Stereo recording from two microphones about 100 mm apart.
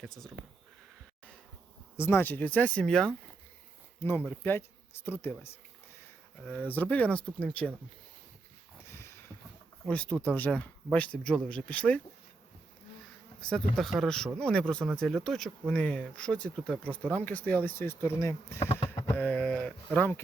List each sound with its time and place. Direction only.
2.0 s speech: 25° left (ahead or behind); by 3.2 s 5° left (ahead or behind)
4.3 s speech: 20° left (ahead or behind)
8.9 s a sound: 25° left (ahead or behind)
9.9 s speech: 10° left (ahead or behind)
13.4 s speech: 5° left (ahead or behind); by 18.6 s 25° left (ahead or behind)
18.6 s a sound: 90° left
19.1 s speech: 15° left (ahead or behind)